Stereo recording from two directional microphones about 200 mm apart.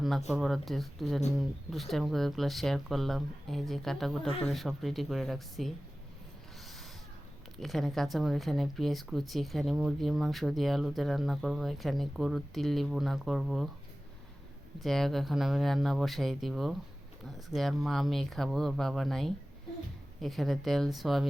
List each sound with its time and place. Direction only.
0.3 s speech: centre (ahead or behind)
7.6 s speech: centre (ahead or behind)
14.8 s speech: centre (ahead or behind)